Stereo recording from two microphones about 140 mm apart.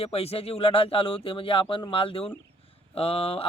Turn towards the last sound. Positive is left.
turn(degrees=40)  # may be behind; listen again after turning